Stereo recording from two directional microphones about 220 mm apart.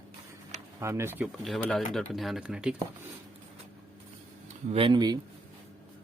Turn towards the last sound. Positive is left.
turn(degrees=-20)  # may be behind; listen again after turning